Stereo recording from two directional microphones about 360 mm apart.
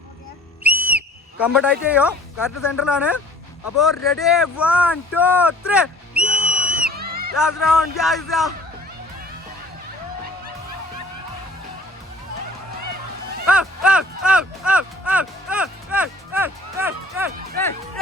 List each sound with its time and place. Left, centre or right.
0.6 s whistle: centre
2.7 s speech: centre
6.6 s music: right
7.3 s speech: centre
13.5 s a sound: centre